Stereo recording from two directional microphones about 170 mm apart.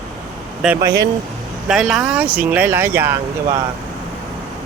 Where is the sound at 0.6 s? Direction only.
5° right (ahead or behind).